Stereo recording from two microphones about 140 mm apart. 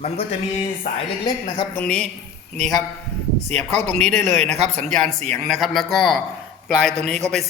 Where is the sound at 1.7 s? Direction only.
10° left (ahead or behind).